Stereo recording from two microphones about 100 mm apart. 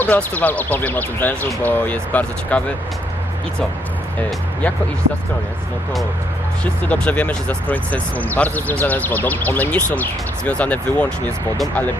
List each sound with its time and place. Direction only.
0.0 s speech: 15° left (ahead or behind)
6.8 s speech: 15° left (ahead or behind)